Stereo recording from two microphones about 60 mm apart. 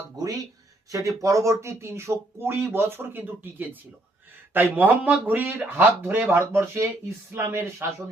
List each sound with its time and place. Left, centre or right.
0.9 s speech: right